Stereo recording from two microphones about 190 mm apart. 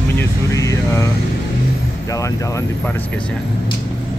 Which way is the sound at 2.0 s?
15° left (ahead or behind).